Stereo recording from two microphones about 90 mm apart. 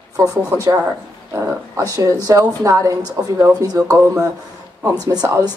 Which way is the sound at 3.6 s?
45° right (ahead or behind).